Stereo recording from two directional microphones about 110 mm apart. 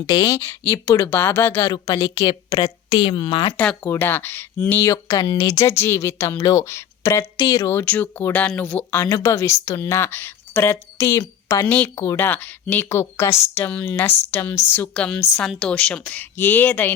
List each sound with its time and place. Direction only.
0.0 s a woman's voice: 35° left (ahead or behind)
1.7 s a woman's voice: 35° left (ahead or behind)
3.8 s a woman's voice: 20° left (ahead or behind)
7.9 s a woman's voice: 15° left (ahead or behind)